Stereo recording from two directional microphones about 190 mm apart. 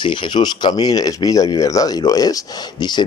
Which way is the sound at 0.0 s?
25° left (ahead or behind).